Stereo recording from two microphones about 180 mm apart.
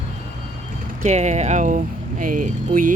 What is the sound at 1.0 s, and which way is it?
Vehicle, 40° right (ahead or behind).